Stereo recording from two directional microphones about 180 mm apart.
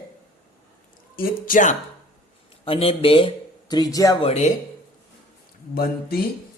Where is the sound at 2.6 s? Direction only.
30° left (ahead or behind).